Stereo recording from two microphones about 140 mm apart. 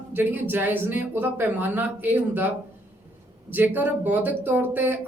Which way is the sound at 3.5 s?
15° right (ahead or behind).